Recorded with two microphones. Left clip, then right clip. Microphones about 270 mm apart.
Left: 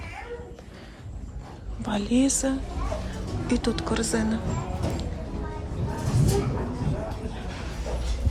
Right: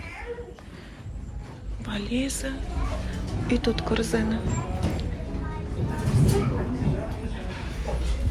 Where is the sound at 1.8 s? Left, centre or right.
Centre.